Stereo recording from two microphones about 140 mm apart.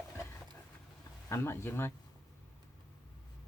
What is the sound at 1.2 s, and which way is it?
Speech, 20° left (ahead or behind).